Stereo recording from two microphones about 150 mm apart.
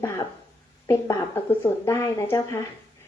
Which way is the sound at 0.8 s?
20° left (ahead or behind).